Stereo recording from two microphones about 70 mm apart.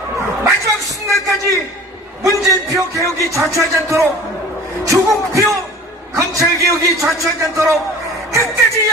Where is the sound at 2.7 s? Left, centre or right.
Right.